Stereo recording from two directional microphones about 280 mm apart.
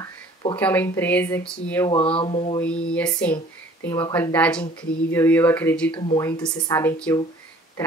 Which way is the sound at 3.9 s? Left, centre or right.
Centre.